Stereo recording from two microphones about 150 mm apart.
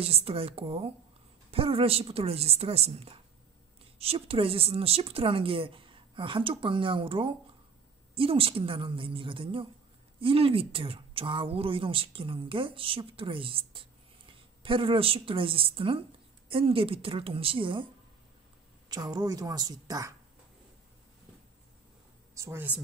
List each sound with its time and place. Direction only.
0.0 s speech: 40° right (ahead or behind)
18.9 s a woman's voice: 25° right (ahead or behind)
22.3 s speech: 20° right (ahead or behind)